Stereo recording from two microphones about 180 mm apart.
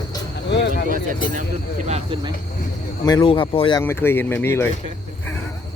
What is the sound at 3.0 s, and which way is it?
Speech, 25° left (ahead or behind).